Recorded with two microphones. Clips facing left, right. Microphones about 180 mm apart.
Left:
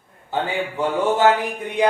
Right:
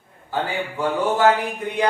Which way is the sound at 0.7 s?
25° left (ahead or behind).